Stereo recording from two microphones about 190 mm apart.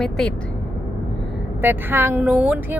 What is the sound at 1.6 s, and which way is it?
Speech, 10° right (ahead or behind).